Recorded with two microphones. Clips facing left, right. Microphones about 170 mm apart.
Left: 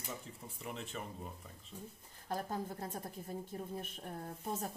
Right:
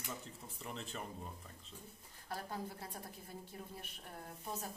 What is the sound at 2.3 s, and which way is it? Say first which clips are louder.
Speech: left 5 dB; 45° left (ahead or behind).